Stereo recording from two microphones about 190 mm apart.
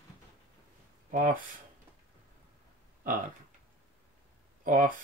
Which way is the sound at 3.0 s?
45° right (ahead or behind).